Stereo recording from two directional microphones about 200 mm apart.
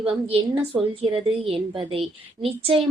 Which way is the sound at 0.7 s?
10° right (ahead or behind).